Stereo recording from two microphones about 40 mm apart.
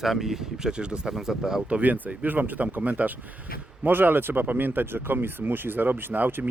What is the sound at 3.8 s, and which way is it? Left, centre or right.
Speech, right.